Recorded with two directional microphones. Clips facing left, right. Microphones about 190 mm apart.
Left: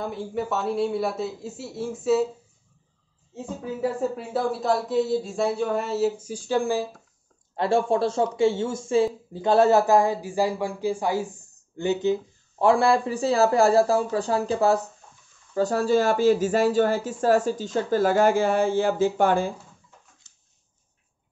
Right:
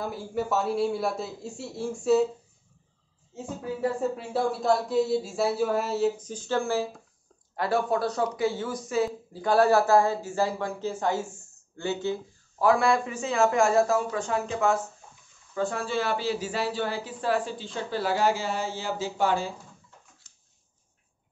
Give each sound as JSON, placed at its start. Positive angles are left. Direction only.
{"t": 0.0, "sound": "speech", "side_deg": 0}
{"t": 4.2, "sound": "speech", "side_deg": 0}
{"t": 7.5, "sound": "speech", "side_deg": 25}